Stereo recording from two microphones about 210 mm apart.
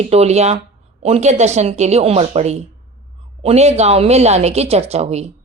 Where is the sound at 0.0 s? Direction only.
30° right (ahead or behind).